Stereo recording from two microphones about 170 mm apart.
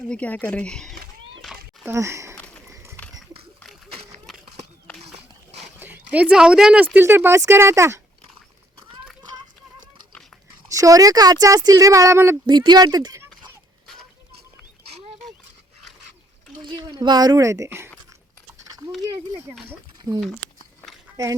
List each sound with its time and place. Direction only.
0.1 s speech: 10° left (ahead or behind)
1.8 s speech: 15° right (ahead or behind)
2.4 s horse: 10° left (ahead or behind)
2.6 s bird: 15° right (ahead or behind)
3.2 s a sound: centre (ahead or behind)
5.8 s speech: 10° right (ahead or behind)
10.7 s speech: 20° right (ahead or behind)
12.5 s speech: 25° right (ahead or behind)
16.6 s speech: 25° right (ahead or behind)
19.6 s speech: 20° right (ahead or behind)